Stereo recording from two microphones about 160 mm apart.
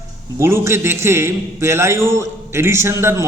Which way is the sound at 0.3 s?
15° right (ahead or behind).